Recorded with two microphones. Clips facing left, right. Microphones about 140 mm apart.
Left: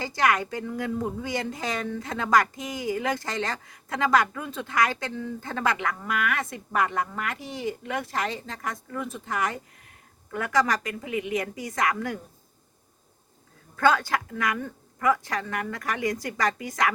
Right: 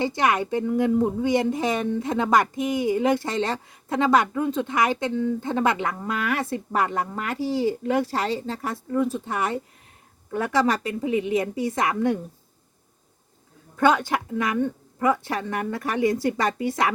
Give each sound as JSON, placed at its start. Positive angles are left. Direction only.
{"t": 0.0, "sound": "a woman's voice", "side_deg": -25}
{"t": 13.7, "sound": "a woman's voice", "side_deg": -20}